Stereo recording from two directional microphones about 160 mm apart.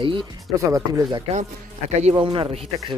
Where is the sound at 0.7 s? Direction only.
20° right (ahead or behind).